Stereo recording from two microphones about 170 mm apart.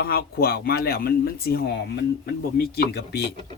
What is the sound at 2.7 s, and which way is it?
Speech, 80° left.